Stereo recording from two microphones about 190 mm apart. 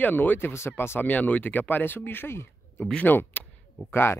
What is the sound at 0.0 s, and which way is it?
Speech, 10° left (ahead or behind).